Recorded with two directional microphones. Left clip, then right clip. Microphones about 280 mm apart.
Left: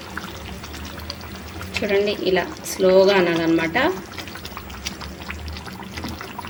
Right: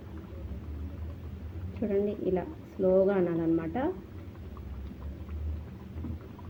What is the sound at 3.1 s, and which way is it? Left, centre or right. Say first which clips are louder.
Speech: left 10 dB; centre.